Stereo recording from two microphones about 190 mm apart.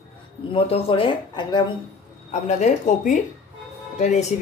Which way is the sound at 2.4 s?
40° left (ahead or behind).